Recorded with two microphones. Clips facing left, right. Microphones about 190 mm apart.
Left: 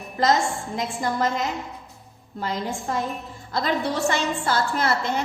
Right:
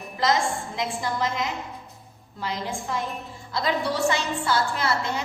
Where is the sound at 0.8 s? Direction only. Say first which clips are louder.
Left 3 dB; 45° left (ahead or behind).